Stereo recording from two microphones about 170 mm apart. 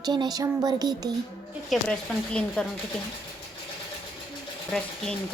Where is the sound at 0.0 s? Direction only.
25° right (ahead or behind).